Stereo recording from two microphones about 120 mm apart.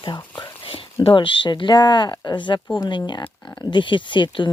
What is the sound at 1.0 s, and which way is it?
Speech, 45° left (ahead or behind).